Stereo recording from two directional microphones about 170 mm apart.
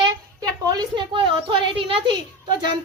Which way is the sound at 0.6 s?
25° right (ahead or behind).